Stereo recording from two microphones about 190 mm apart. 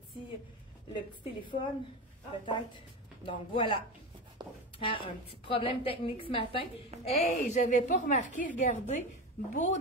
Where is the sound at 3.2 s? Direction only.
25° left (ahead or behind).